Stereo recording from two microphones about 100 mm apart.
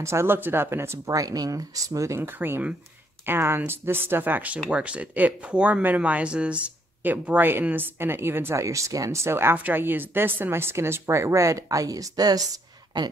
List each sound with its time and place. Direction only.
0.0 s speech: 25° right (ahead or behind); by 13.1 s 45° right (ahead or behind)